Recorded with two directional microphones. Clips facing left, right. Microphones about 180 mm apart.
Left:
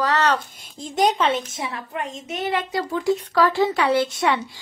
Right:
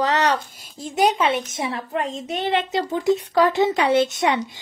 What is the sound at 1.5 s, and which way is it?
A woman's voice, 30° right (ahead or behind).